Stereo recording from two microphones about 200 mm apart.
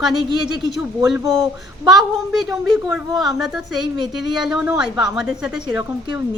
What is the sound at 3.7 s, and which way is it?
Child singing, 20° right (ahead or behind).